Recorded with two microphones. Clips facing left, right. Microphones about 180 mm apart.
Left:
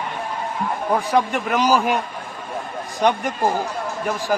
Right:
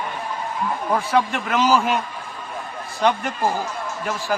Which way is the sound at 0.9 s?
15° left (ahead or behind).